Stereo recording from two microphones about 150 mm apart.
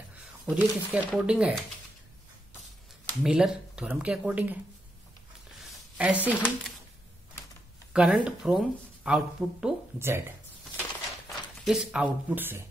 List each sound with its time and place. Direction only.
0.5 s speech: 5° right (ahead or behind)
3.3 s speech: 5° right (ahead or behind)
5.6 s a sound: 10° right (ahead or behind)
7.9 s speech: 5° right (ahead or behind)
9.9 s speech: 15° right (ahead or behind)
11.2 s speech: centre (ahead or behind)